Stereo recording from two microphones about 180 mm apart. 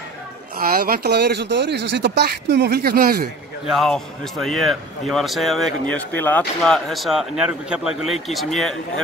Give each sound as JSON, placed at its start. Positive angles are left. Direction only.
{"t": 0.7, "sound": "speech", "side_deg": -55}
{"t": 3.6, "sound": "speech", "side_deg": 0}